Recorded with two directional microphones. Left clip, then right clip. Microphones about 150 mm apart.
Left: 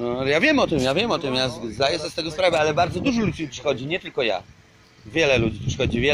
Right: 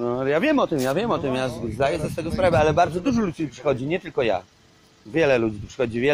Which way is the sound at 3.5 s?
25° right (ahead or behind).